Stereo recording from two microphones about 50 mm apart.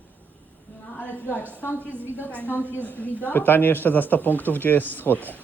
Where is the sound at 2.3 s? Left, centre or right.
Left.